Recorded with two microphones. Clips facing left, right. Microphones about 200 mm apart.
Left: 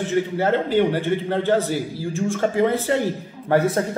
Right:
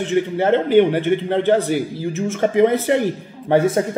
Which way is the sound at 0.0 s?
20° right (ahead or behind).